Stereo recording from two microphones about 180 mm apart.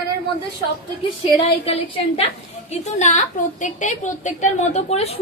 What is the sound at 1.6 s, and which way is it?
A woman's voice, 35° left (ahead or behind).